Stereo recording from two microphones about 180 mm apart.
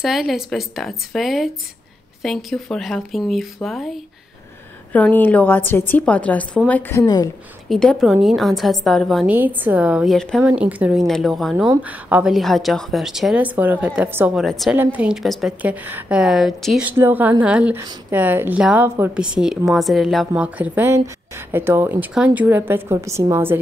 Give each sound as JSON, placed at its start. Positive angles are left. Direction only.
{"t": 0.0, "sound": "a woman's voice", "side_deg": 0}
{"t": 7.7, "sound": "a woman's voice", "side_deg": 0}
{"t": 9.3, "sound": "a woman's voice", "side_deg": -10}